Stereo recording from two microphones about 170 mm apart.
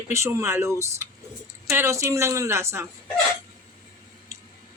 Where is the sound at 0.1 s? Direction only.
15° right (ahead or behind).